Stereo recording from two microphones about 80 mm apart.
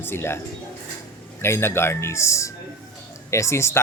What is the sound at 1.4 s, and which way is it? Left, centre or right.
A man's voice, left.